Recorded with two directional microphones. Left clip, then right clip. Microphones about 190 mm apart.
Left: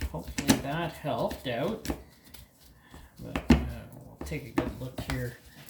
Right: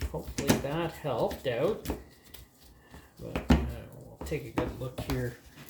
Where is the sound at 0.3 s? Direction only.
10° right (ahead or behind).